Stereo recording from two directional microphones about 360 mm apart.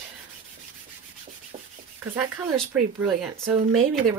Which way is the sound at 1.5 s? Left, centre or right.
Centre.